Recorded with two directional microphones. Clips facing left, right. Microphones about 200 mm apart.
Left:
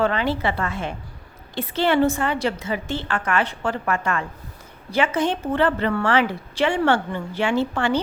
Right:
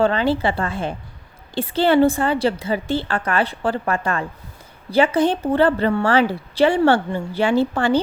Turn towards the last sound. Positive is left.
turn(degrees=-35)  # may be behind; listen again after turning